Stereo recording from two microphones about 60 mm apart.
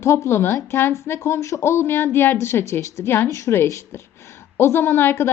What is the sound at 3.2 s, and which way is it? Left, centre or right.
Speech, left.